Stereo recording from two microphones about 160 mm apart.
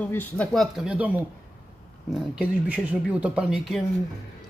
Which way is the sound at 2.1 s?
10° right (ahead or behind).